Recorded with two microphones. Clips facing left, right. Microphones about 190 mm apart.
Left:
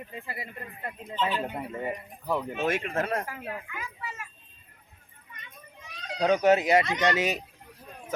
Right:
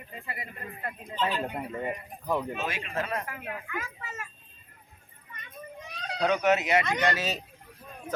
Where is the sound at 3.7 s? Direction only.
45° right (ahead or behind).